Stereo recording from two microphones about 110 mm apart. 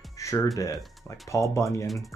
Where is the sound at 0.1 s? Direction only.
30° left (ahead or behind).